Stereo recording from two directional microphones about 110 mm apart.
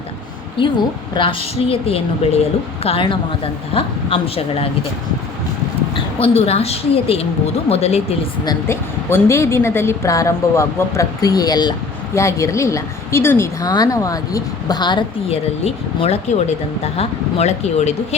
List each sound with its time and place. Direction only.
0.5 s a woman's voice: 45° left (ahead or behind)
1.7 s speech: 65° left (ahead or behind)
6.1 s speech: 65° left (ahead or behind)
8.6 s a woman's voice: 25° left (ahead or behind)
12.1 s a woman's voice: 25° left (ahead or behind)
13.6 s speech: 35° left (ahead or behind)
15.3 s speech: 65° left (ahead or behind); by 17.9 s 85° left